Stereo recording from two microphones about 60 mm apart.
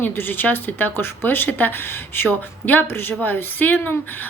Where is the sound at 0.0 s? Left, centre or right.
Left.